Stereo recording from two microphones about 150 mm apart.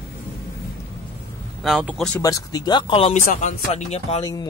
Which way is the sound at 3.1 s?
50° left (ahead or behind).